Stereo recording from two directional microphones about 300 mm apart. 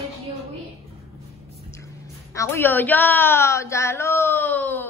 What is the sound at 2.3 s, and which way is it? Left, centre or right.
A woman's voice, centre.